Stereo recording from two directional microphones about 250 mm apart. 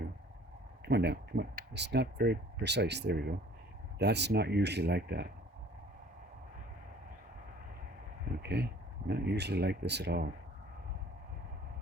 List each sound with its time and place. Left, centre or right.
0.9 s speech: right
8.4 s speech: right